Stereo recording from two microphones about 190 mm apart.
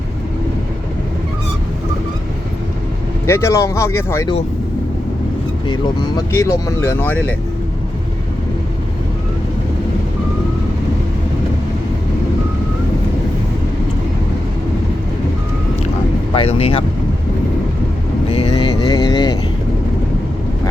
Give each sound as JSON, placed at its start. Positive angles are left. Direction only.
{"t": 3.2, "sound": "speech", "side_deg": 15}
{"t": 5.6, "sound": "speech", "side_deg": 25}
{"t": 16.3, "sound": "speech", "side_deg": 30}
{"t": 18.3, "sound": "vehicle", "side_deg": 30}